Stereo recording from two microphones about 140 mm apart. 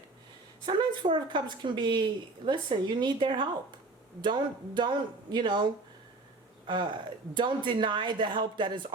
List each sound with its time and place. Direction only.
0.6 s speech: 35° right (ahead or behind)